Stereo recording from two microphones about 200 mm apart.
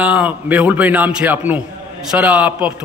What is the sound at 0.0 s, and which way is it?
A man's voice, 5° right (ahead or behind).